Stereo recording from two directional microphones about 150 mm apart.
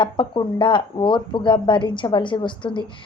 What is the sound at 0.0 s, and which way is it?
Speech, 35° left (ahead or behind).